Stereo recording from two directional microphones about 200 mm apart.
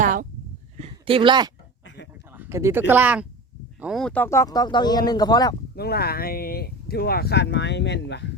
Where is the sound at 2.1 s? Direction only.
10° right (ahead or behind); by 5.6 s 20° left (ahead or behind).